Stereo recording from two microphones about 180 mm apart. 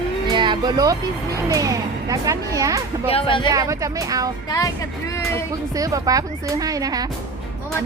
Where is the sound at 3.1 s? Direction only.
30° left (ahead or behind).